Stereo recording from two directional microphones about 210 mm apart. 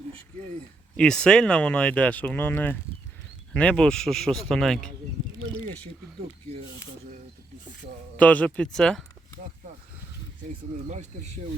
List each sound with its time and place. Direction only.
0.9 s speech: 5° left (ahead or behind)
8.1 s speech: 5° left (ahead or behind)
10.5 s speech: 35° right (ahead or behind)